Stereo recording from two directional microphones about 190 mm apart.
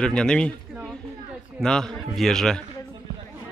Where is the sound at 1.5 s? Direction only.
5° left (ahead or behind).